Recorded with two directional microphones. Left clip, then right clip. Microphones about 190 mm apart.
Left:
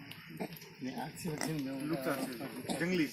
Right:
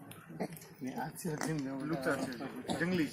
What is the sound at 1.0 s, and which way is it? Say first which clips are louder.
Speech: right 1 dB; 20° left (ahead or behind).